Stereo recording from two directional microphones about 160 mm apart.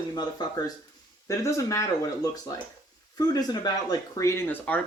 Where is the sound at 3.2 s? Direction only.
25° left (ahead or behind).